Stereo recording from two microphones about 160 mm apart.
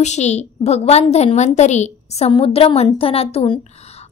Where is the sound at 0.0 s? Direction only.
45° left (ahead or behind).